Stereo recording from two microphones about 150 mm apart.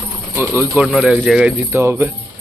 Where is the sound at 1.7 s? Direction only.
15° right (ahead or behind).